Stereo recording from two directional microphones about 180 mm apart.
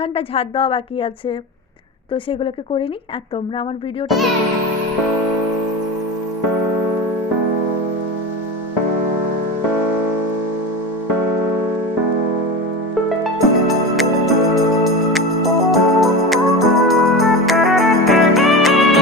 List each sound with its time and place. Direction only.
0.0 s a woman's voice: 30° left (ahead or behind)
13.7 s music: centre (ahead or behind)